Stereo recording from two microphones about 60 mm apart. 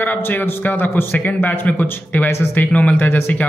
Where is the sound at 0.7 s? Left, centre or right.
Left.